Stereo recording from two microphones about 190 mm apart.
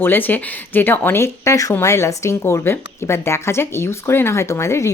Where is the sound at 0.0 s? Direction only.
10° left (ahead or behind).